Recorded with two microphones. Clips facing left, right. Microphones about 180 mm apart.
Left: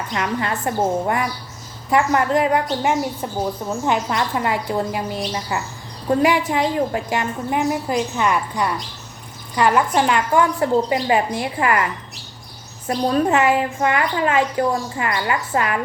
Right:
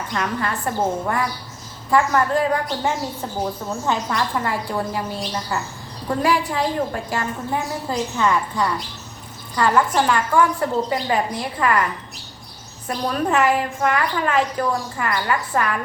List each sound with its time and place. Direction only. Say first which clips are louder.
0.1 s a woman's voice: left 1 dB; 20° left (ahead or behind)
12.9 s a woman's voice: left 4 dB; 25° left (ahead or behind)